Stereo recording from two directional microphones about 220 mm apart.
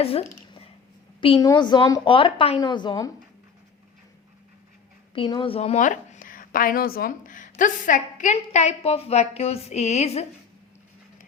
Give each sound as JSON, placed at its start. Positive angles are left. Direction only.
{"t": 0.0, "sound": "a sound", "side_deg": 25}
{"t": 1.2, "sound": "a woman's voice", "side_deg": 20}
{"t": 5.1, "sound": "a woman's voice", "side_deg": 25}